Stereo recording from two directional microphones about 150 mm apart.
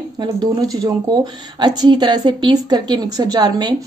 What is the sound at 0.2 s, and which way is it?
A woman's voice, 25° right (ahead or behind).